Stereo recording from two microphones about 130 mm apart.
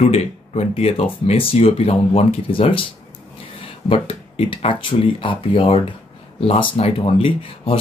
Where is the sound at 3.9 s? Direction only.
45° left (ahead or behind).